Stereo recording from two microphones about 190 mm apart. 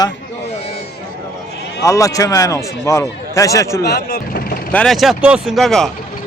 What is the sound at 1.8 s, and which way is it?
A man's voice, 15° left (ahead or behind).